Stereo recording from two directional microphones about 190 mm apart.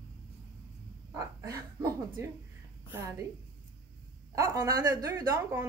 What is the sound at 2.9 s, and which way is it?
Speech, 10° right (ahead or behind).